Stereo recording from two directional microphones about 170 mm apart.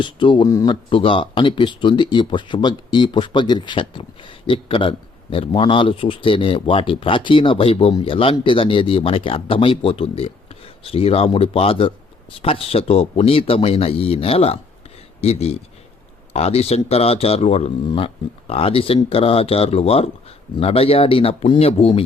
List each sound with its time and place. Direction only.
0.0 s speech: 30° left (ahead or behind)